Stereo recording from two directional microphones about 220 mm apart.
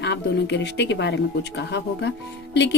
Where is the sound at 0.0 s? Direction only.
50° left (ahead or behind).